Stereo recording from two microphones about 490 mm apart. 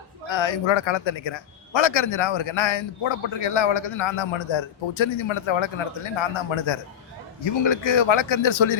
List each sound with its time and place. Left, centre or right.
0.3 s speech: left